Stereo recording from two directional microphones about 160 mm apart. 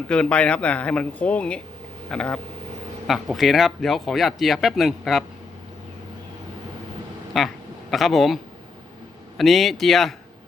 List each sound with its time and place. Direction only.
0.1 s speech: 5° left (ahead or behind)
7.3 s speech: centre (ahead or behind)
9.4 s speech: centre (ahead or behind)